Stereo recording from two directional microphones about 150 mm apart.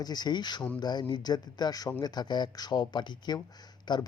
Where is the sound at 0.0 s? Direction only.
25° left (ahead or behind).